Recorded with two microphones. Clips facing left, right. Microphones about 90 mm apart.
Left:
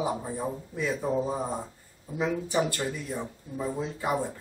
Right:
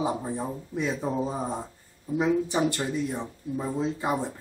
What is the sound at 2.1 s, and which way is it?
Speech, 20° right (ahead or behind).